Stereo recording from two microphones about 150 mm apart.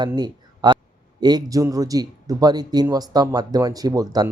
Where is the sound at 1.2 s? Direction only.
25° right (ahead or behind).